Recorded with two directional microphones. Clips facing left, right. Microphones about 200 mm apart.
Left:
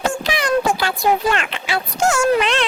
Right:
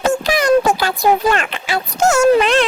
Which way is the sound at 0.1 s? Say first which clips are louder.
Right 6 dB; 45° right (ahead or behind).